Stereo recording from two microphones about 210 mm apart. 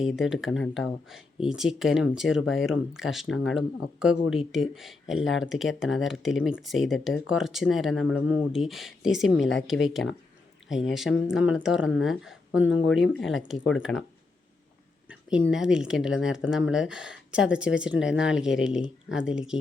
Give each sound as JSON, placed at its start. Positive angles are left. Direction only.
{"t": 0.0, "sound": "speech", "side_deg": 0}
{"t": 12.7, "sound": "speech", "side_deg": 65}
{"t": 13.1, "sound": "speech", "side_deg": 0}
{"t": 15.1, "sound": "speech", "side_deg": -5}